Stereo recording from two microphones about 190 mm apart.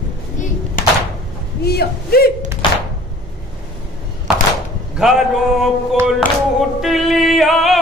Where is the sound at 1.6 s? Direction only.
55° left (ahead or behind).